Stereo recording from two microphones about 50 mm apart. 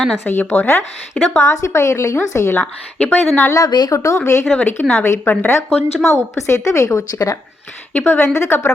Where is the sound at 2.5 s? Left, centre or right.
Left.